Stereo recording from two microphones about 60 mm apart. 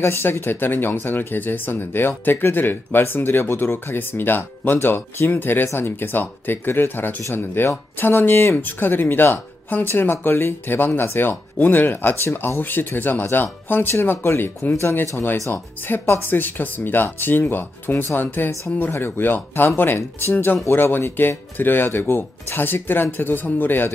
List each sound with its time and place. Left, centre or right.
0.0 s speech: left